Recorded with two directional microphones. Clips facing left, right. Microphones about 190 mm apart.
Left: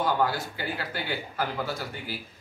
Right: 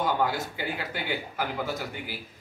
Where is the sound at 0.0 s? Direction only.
20° right (ahead or behind).